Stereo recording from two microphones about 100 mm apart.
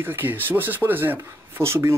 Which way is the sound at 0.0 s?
20° right (ahead or behind).